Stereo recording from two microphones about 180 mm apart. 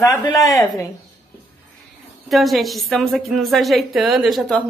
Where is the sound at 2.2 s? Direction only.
Centre (ahead or behind).